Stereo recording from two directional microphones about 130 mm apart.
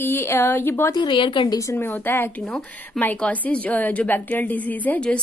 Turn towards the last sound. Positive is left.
turn(degrees=10)  # may be behind; listen again after turning